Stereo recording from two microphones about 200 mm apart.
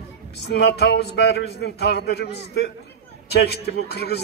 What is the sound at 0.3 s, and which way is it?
A man's voice, 55° left (ahead or behind).